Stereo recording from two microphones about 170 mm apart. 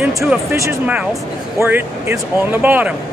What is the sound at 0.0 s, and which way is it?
Speech, 5° right (ahead or behind).